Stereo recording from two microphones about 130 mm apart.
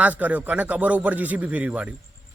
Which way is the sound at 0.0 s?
10° right (ahead or behind).